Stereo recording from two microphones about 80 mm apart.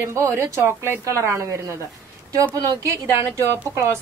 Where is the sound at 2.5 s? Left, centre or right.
Right.